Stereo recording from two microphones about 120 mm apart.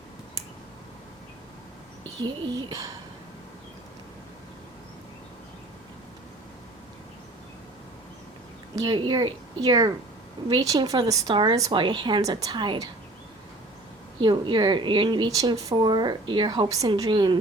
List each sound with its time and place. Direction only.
2.2 s a woman's voice: 35° right (ahead or behind)
8.7 s a woman's voice: 40° right (ahead or behind)
14.2 s a woman's voice: 40° right (ahead or behind)
16.6 s a woman's voice: 30° right (ahead or behind)